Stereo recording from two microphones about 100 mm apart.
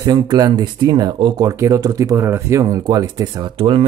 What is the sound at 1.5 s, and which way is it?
Speech, 30° right (ahead or behind).